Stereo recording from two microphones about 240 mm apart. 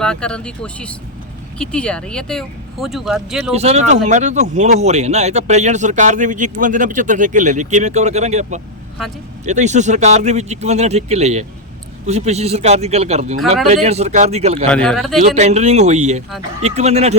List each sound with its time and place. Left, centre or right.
0.0 s speech: centre
3.5 s speech: right
14.7 s speech: centre
15.2 s speech: right